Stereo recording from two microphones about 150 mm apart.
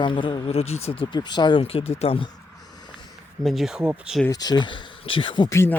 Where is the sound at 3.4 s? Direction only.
Centre (ahead or behind).